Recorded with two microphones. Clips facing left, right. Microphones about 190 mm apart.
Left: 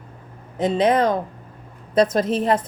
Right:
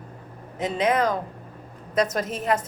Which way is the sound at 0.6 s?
30° left (ahead or behind).